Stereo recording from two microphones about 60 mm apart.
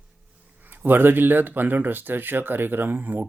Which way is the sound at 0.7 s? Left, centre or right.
Right.